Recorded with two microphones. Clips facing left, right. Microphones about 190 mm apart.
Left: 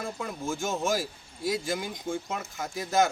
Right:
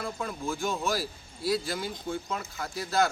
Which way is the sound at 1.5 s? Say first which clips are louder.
Even; 20° left (ahead or behind).